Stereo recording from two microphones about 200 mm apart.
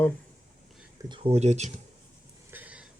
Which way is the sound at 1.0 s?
25° right (ahead or behind).